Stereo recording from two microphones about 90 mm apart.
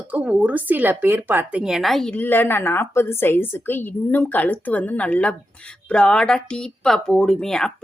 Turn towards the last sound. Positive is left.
turn(degrees=5)  # may be behind; listen again after turning